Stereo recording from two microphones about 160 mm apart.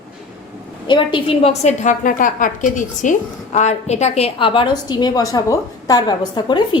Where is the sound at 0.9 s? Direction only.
30° left (ahead or behind).